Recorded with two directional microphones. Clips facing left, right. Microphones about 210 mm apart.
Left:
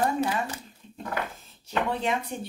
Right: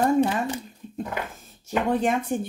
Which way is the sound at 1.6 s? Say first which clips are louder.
Right 5 dB; 45° right (ahead or behind).